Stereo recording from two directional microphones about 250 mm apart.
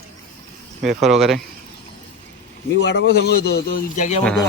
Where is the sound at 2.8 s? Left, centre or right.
Left.